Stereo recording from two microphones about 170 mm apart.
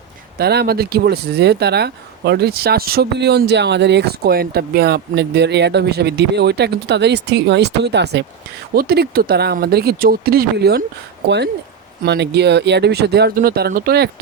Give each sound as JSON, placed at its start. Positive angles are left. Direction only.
{"t": 0.3, "sound": "speech", "side_deg": -70}
{"t": 8.7, "sound": "speech", "side_deg": -65}
{"t": 12.0, "sound": "speech", "side_deg": -80}